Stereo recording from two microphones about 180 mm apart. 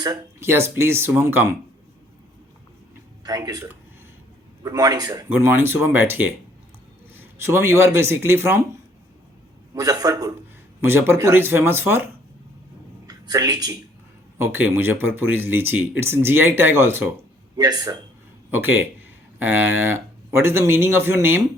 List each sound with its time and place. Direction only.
0.0 s speech: 20° right (ahead or behind)
3.2 s speech: 20° right (ahead or behind)
5.5 s speech: 10° right (ahead or behind)
9.7 s speech: 20° right (ahead or behind)
13.1 s speech: 20° right (ahead or behind)
18.5 s speech: 10° right (ahead or behind)